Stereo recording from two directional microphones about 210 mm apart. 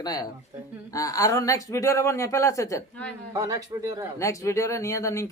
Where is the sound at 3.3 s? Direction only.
15° right (ahead or behind).